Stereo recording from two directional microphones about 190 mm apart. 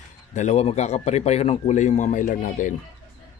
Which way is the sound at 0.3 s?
35° left (ahead or behind).